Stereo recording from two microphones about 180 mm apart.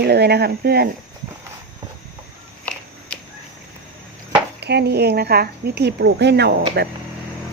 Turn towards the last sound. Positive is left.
turn(degrees=-65)  # may be behind; listen again after turning